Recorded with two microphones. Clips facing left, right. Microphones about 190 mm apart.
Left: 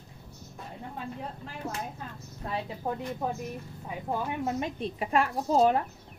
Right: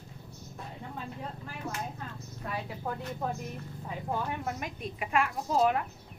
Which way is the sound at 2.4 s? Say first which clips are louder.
Left 3 dB; 25° left (ahead or behind).